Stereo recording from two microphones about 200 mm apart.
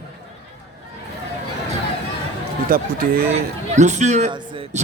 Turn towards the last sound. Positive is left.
turn(degrees=-25)  # may be behind; listen again after turning